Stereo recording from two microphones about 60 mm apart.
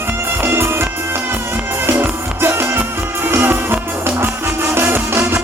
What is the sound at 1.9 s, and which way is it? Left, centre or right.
Music, right.